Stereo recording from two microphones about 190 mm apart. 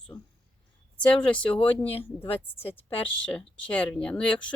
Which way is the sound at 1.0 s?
5° left (ahead or behind).